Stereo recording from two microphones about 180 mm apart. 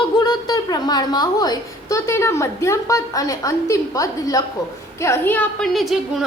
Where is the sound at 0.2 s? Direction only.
25° left (ahead or behind).